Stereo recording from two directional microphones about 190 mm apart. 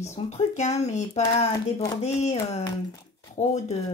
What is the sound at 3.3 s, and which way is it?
Speech, 35° left (ahead or behind).